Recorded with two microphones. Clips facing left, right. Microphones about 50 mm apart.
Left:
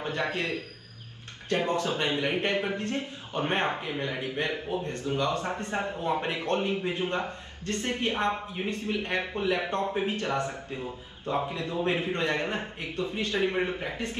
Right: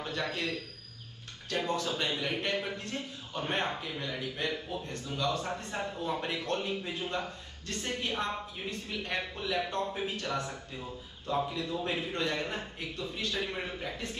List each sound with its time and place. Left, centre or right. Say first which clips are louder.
0.0 s a man's voice: left 4 dB; left